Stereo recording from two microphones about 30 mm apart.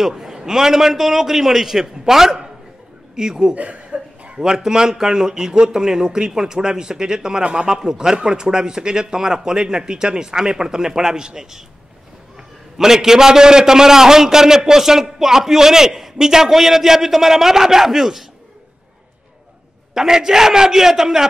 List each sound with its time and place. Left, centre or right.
0.0 s a man's voice: centre
3.5 s chuckle: right
4.4 s a man's voice: centre
12.7 s a man's voice: centre
19.9 s a man's voice: centre